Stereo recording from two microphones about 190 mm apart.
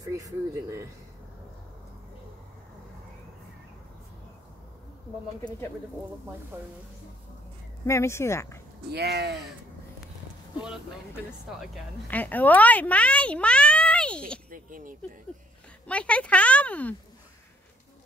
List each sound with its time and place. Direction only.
0.0 s speech: 15° right (ahead or behind)
6.5 s speech: 10° right (ahead or behind)
7.8 s speech: 15° left (ahead or behind)
8.9 s speech: 60° right (ahead or behind)
11.6 s speech: 5° left (ahead or behind)
14.5 s speech: 45° right (ahead or behind)
15.9 s speech: 5° left (ahead or behind)